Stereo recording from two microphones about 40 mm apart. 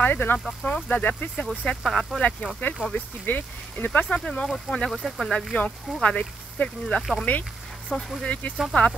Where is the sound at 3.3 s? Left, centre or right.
Left.